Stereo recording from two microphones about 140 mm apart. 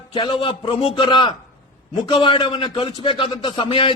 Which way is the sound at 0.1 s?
30° left (ahead or behind).